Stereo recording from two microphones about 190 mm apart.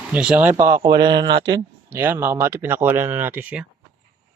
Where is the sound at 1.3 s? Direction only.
65° right (ahead or behind).